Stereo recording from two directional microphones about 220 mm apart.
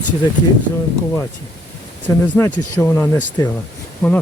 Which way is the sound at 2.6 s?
10° left (ahead or behind).